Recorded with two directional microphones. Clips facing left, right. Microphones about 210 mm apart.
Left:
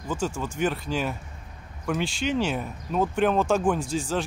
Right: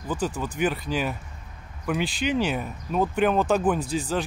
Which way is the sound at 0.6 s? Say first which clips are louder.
Right 1 dB; 5° right (ahead or behind).